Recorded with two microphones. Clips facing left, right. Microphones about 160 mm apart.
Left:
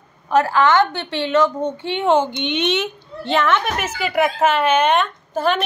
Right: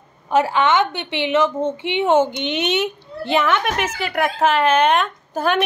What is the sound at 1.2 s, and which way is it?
Speech, 25° right (ahead or behind).